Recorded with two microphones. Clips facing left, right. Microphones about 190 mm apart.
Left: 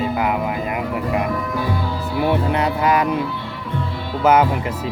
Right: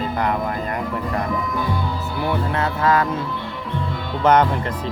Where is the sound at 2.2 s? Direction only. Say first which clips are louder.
Left 4 dB; 20° left (ahead or behind).